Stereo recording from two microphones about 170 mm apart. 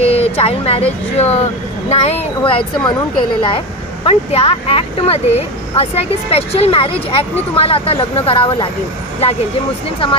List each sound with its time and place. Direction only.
0.0 s speech: 35° left (ahead or behind)
4.0 s speech: 35° left (ahead or behind)